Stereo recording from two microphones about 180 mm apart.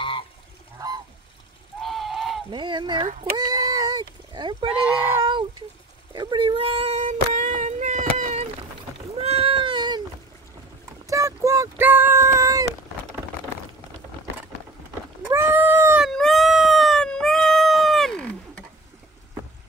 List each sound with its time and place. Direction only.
0.7 s goose: 20° right (ahead or behind)
1.8 s goose: centre (ahead or behind)
2.5 s speech: 25° right (ahead or behind)
3.3 s sheep: 20° right (ahead or behind)
4.7 s speech: 5° right (ahead or behind)
6.1 s a sound: 25° right (ahead or behind)
11.1 s child singing: 15° right (ahead or behind)
15.2 s cat: 15° right (ahead or behind)
16.1 s cat: centre (ahead or behind)